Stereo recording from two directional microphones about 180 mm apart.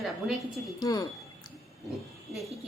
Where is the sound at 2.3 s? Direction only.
Centre (ahead or behind).